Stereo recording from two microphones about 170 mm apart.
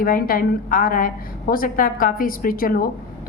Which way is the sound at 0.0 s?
55° left (ahead or behind).